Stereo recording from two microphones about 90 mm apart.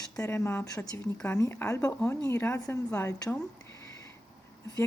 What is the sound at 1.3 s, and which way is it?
Speech, 25° left (ahead or behind).